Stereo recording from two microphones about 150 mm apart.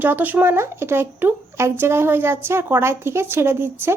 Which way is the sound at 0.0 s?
10° right (ahead or behind).